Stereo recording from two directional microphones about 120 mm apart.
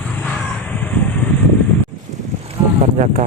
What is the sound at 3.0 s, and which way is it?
Speech, 85° right.